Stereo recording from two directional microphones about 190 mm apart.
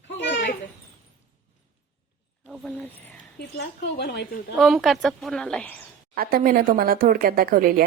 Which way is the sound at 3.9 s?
55° left (ahead or behind).